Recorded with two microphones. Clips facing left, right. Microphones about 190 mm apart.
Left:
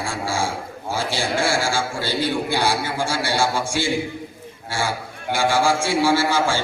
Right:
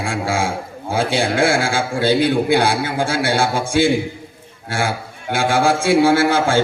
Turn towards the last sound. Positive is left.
turn(degrees=-55)  # may be behind; listen again after turning